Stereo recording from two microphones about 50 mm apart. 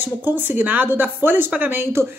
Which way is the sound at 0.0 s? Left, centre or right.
Right.